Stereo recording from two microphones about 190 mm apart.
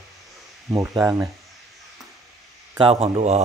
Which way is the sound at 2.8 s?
30° right (ahead or behind).